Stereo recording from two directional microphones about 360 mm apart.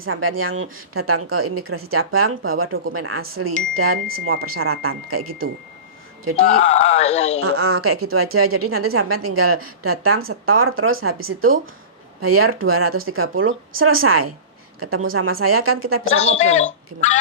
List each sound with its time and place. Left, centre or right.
0.0 s a woman's voice: right
6.6 s speech: centre
7.4 s a woman's voice: right
16.0 s a woman's voice: centre